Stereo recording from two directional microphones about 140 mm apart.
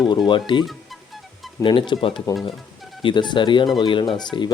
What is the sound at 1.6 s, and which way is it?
Speech, 35° left (ahead or behind).